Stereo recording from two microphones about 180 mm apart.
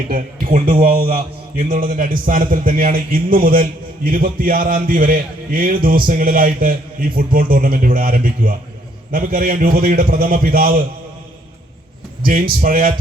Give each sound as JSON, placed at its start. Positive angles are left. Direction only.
{"t": 0.1, "sound": "a man's voice", "side_deg": -45}
{"t": 12.2, "sound": "a man's voice", "side_deg": -50}